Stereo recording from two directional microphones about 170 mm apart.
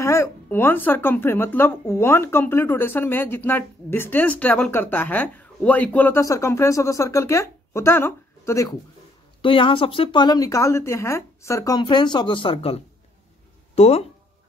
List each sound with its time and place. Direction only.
0.0 s speech: 15° left (ahead or behind)
9.4 s speech: 30° left (ahead or behind)